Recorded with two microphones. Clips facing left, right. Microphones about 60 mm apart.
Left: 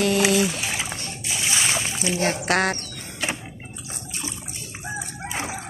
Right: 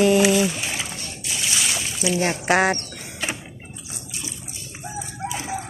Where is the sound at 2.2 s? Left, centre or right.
Centre.